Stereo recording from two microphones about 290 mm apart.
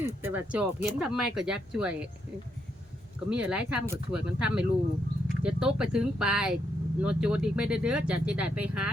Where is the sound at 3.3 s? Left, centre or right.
Centre.